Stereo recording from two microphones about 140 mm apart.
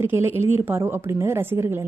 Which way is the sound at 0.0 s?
15° right (ahead or behind).